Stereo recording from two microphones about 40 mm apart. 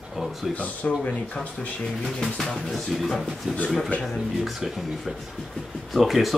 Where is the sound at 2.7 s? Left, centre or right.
Centre.